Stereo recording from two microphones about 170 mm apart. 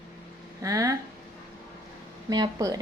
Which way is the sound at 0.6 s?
20° right (ahead or behind).